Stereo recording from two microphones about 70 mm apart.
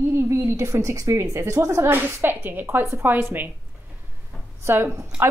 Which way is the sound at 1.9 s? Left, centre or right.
Right.